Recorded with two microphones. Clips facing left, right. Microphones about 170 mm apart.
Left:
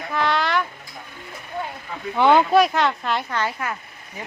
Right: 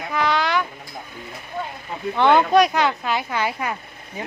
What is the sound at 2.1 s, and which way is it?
Speech, 10° left (ahead or behind).